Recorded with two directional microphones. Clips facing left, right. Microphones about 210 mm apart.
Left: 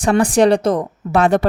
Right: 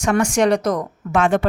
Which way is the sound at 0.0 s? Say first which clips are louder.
Left 4 dB; 35° left (ahead or behind).